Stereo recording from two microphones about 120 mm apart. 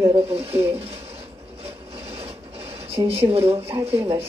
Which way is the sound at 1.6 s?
55° right (ahead or behind).